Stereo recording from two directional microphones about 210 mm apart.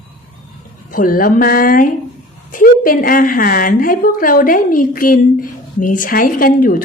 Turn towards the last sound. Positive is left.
turn(degrees=40)  # may be behind; listen again after turning